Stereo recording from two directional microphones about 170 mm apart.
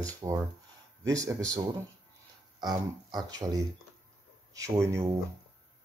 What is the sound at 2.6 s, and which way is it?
A man's voice, 25° right (ahead or behind).